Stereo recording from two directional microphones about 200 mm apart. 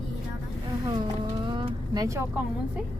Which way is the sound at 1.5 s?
20° right (ahead or behind).